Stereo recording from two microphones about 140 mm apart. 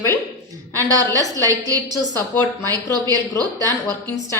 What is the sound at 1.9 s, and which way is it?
Speech, 20° left (ahead or behind).